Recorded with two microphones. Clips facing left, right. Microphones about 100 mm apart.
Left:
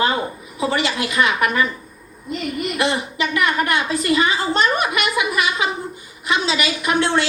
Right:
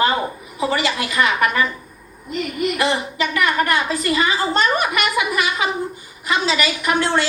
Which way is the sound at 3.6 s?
35° right (ahead or behind).